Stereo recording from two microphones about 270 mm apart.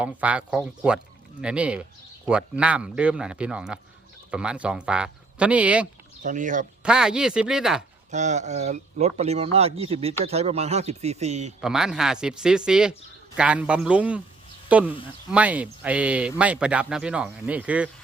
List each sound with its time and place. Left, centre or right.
0.0 s speech: centre
6.2 s speech: right
6.8 s speech: centre
8.1 s speech: right
11.6 s speech: centre